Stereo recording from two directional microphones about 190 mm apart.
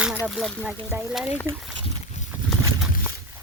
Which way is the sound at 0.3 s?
Centre (ahead or behind).